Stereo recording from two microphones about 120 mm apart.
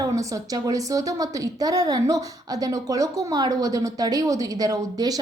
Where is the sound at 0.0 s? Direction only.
30° right (ahead or behind).